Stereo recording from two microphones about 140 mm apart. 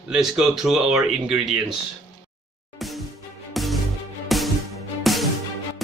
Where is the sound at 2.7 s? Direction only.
Centre (ahead or behind).